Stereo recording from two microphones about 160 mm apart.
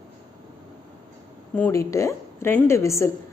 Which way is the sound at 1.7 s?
20° left (ahead or behind).